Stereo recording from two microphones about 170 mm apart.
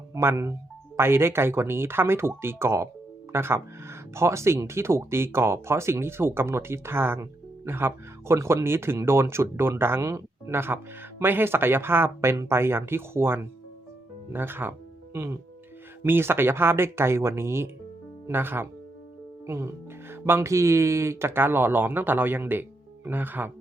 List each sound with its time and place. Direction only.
0.1 s speech: 15° right (ahead or behind)